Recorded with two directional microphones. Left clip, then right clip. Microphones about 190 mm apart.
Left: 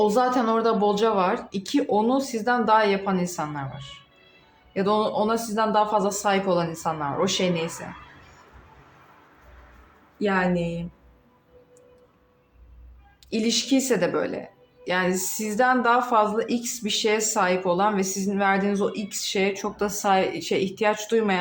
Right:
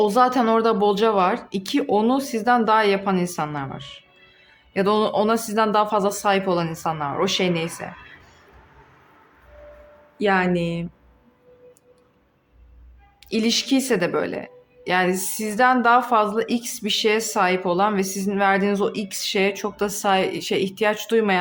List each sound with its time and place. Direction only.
0.0 s speech: 30° right (ahead or behind)
10.2 s speech: 35° right (ahead or behind)
13.3 s speech: 30° right (ahead or behind)